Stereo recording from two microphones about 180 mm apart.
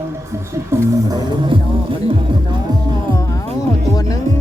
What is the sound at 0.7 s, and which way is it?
Music, 25° right (ahead or behind).